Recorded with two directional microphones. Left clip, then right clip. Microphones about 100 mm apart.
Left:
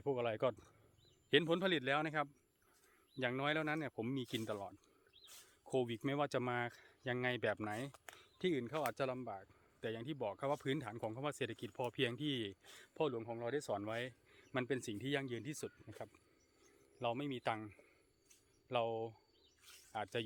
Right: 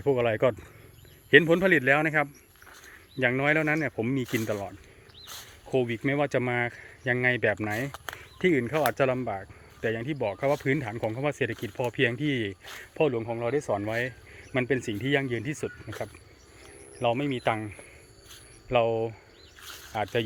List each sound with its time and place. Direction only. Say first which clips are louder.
0.0 s speech: right 14 dB; 30° left (ahead or behind)
5.8 s speech: right 13 dB; 65° left (ahead or behind)
7.9 s a sound: right 18 dB; 15° right (ahead or behind)
8.4 s speech: right 14 dB; 45° left (ahead or behind)
8.9 s speech: right 15 dB; 30° left (ahead or behind)
9.8 s speech: right 14 dB; 50° left (ahead or behind)
13.1 s speech: right 13 dB; 45° left (ahead or behind)
13.7 s speech: right 13 dB; 60° left (ahead or behind)
14.9 s speech: right 14 dB; 50° left (ahead or behind)
17.0 s speech: right 14 dB; 50° left (ahead or behind)